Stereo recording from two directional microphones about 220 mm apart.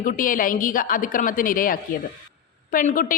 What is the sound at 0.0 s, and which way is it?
A woman's voice, 40° left (ahead or behind).